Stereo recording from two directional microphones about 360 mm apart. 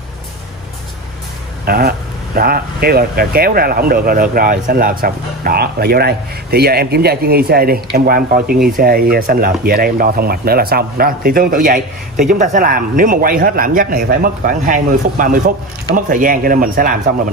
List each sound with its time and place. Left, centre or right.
1.7 s speech: right